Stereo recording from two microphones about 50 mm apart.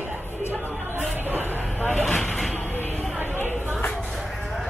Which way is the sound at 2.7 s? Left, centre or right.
Left.